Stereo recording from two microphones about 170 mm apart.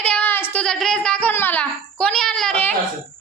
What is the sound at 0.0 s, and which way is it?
Child singing, 5° left (ahead or behind).